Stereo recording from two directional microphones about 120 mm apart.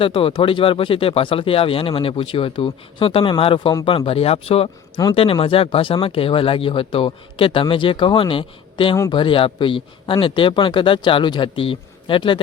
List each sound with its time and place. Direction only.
0.0 s speech: 50° left (ahead or behind)